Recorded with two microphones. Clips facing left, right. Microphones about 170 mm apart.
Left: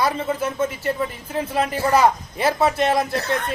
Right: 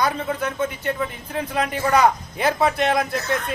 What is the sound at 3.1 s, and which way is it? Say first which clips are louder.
Speech: left 1 dB; 30° left (ahead or behind).